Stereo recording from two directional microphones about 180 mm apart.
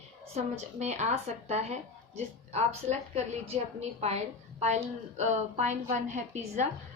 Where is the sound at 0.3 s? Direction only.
40° right (ahead or behind).